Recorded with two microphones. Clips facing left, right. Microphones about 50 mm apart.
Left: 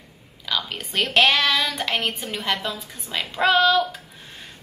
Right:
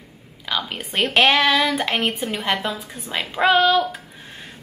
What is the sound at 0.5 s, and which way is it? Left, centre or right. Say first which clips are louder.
A woman's voice: right 2 dB; centre.